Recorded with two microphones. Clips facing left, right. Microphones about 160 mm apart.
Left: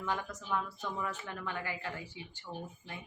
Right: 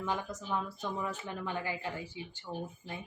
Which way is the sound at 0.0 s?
15° right (ahead or behind).